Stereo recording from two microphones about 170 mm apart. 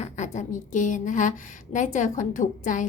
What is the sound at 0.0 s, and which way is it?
A woman's voice, 45° left (ahead or behind).